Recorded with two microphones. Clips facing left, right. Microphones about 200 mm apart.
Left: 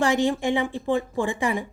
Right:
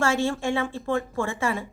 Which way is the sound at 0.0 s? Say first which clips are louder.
Left 3 dB; 15° left (ahead or behind).